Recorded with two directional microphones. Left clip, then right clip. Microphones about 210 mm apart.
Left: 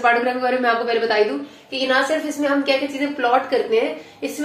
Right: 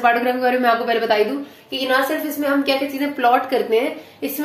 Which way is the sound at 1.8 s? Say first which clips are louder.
Even; 25° right (ahead or behind).